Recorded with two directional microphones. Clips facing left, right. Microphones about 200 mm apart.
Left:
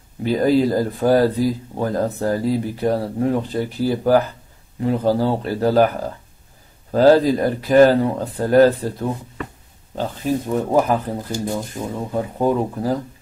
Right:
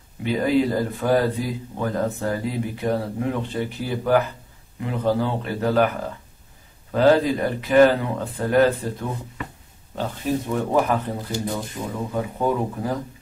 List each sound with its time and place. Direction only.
0.2 s speech: 40° left (ahead or behind)
10.5 s speech: 35° left (ahead or behind)